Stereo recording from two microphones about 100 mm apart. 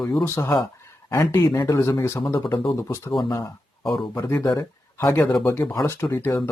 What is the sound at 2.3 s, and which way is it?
Speech, 45° left (ahead or behind).